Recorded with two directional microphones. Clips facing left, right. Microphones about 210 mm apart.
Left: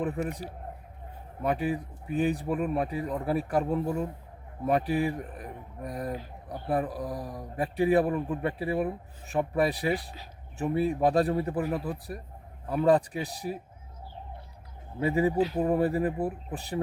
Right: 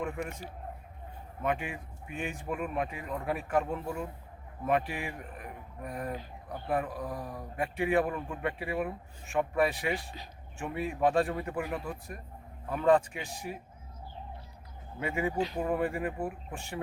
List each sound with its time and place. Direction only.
0.3 s speech: 35° left (ahead or behind)
14.9 s speech: 35° left (ahead or behind)